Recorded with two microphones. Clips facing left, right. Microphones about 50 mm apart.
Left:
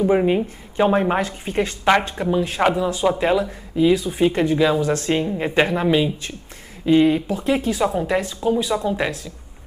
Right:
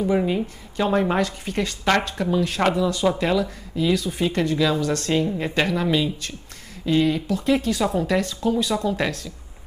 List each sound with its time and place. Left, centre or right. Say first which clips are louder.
0.0 s a woman's voice: left 4 dB; left